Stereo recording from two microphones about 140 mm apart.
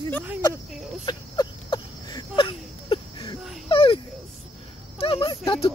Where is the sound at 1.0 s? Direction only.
30° left (ahead or behind).